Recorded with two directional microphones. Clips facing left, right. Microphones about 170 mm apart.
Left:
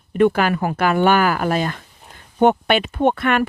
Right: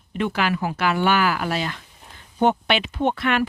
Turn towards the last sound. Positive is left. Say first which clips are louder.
# left 4 dB
turn(degrees=50)  # may be behind; listen again after turning